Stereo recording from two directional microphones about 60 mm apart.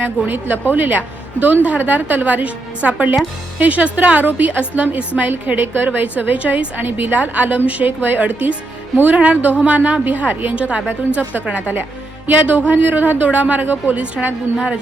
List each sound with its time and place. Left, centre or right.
0.3 s a woman's voice: right